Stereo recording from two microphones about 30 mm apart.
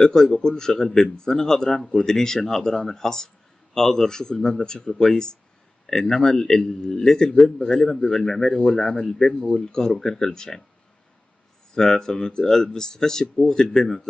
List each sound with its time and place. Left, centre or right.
0.0 s a man's voice: centre
11.7 s speech: left
13.7 s a man's voice: centre